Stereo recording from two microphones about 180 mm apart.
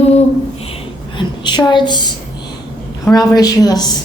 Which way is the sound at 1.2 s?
25° left (ahead or behind).